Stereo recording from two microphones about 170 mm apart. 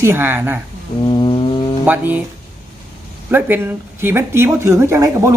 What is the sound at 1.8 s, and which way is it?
Speech, 10° right (ahead or behind).